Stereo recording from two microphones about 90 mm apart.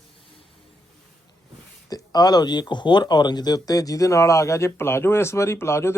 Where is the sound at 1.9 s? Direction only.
45° left (ahead or behind).